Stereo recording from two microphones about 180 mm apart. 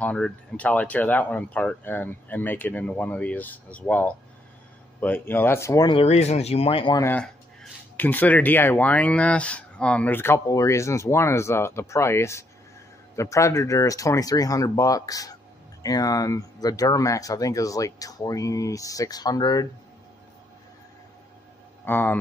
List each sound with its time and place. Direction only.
0.0 s speech: 5° left (ahead or behind); by 7.0 s 30° left (ahead or behind)
7.0 s speech: 10° left (ahead or behind)
21.8 s speech: 10° left (ahead or behind)